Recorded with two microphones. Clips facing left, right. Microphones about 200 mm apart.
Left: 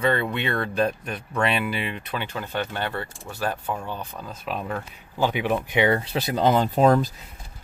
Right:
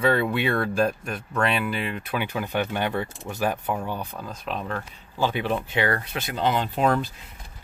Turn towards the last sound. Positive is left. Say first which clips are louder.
# left 4 dB
turn(degrees=40)  # may be behind; listen again after turning